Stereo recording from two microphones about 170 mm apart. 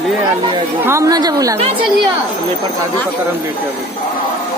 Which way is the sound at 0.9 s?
20° right (ahead or behind).